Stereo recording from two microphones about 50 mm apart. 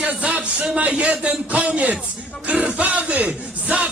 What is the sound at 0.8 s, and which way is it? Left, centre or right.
Music, right.